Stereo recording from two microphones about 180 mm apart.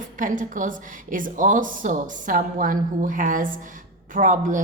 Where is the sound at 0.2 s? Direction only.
45° right (ahead or behind).